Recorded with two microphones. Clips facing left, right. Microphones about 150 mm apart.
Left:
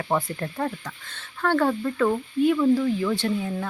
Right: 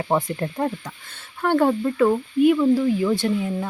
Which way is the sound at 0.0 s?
20° right (ahead or behind).